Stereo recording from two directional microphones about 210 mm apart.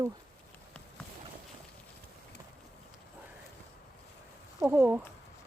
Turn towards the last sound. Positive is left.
turn(degrees=-10)  # may be behind; listen again after turning